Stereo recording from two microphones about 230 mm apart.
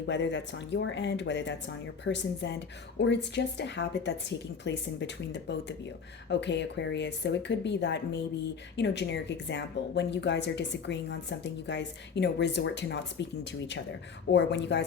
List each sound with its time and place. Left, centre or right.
0.0 s speech: left